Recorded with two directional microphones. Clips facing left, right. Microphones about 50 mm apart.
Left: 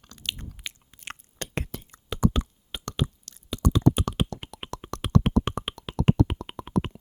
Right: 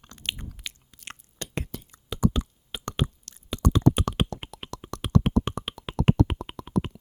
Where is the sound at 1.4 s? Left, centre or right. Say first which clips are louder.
Left 1 dB; left.